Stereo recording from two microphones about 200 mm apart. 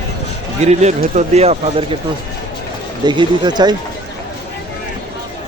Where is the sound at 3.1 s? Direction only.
20° right (ahead or behind).